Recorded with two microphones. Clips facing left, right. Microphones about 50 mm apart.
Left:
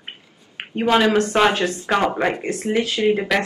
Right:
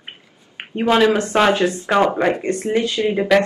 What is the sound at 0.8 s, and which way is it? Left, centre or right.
A woman's voice, centre.